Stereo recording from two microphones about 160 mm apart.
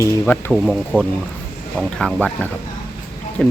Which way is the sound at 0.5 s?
Centre (ahead or behind).